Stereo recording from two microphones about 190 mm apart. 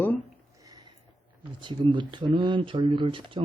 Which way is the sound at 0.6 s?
20° right (ahead or behind).